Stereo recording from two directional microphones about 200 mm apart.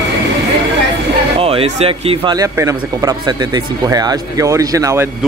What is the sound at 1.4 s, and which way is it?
Speech, 30° right (ahead or behind).